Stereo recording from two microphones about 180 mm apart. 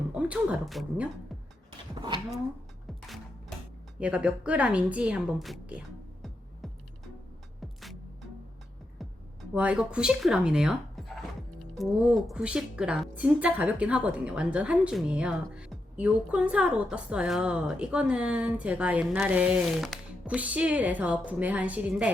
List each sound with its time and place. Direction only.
0.1 s speech: 10° right (ahead or behind)
2.0 s speech: 25° right (ahead or behind)
4.0 s a woman's voice: 5° right (ahead or behind)
7.6 s music: centre (ahead or behind)
9.6 s a woman's voice: 5° right (ahead or behind)